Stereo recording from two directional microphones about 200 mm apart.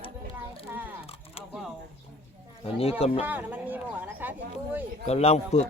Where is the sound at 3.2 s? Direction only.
10° right (ahead or behind).